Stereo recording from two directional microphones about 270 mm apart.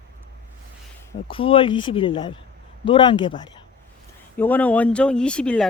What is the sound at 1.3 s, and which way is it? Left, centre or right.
Speech, centre.